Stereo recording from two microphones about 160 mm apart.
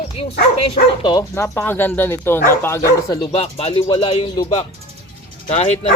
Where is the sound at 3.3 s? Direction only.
40° left (ahead or behind).